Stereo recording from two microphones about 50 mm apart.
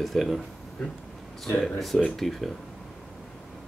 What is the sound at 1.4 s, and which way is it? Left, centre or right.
Speech, centre.